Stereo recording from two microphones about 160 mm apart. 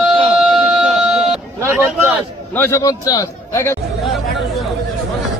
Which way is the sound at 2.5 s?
15° left (ahead or behind).